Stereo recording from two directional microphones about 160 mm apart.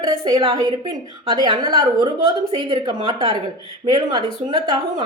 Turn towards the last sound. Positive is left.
turn(degrees=-25)  # may be behind; listen again after turning